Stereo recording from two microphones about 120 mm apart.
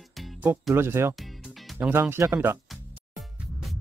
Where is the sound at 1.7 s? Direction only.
15° right (ahead or behind).